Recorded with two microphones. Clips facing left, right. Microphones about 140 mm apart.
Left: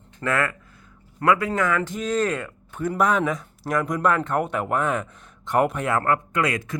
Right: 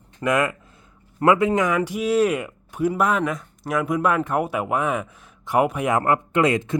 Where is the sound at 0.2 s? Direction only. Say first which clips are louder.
Right 3 dB; 15° right (ahead or behind).